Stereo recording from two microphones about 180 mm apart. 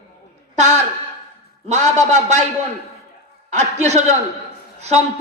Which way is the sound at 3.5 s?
40° right (ahead or behind).